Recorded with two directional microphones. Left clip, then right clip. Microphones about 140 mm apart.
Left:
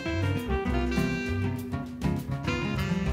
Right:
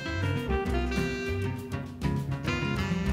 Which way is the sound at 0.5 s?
Centre (ahead or behind).